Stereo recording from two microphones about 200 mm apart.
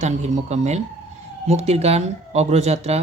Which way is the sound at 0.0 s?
35° right (ahead or behind).